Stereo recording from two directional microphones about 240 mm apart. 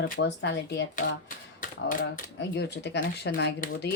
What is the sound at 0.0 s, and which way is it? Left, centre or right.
Speech, left.